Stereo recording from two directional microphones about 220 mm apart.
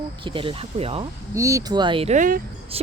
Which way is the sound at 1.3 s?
15° right (ahead or behind).